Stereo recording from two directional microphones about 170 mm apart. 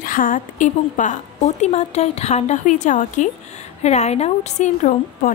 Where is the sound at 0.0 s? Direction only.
55° left (ahead or behind).